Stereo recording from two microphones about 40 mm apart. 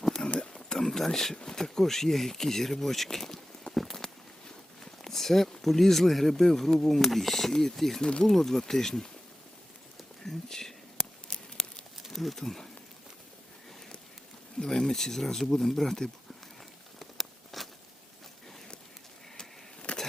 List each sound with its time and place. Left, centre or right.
0.3 s a sound: centre
1.4 s speech: centre
3.7 s walk: centre
7.5 s speech: centre
10.2 s whispering: centre
11.3 s tearing: centre
12.1 s speech: centre
14.6 s speech: centre
17.0 s a sound: centre